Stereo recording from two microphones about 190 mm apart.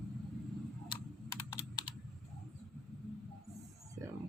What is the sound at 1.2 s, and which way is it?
Computer keyboard, 15° left (ahead or behind).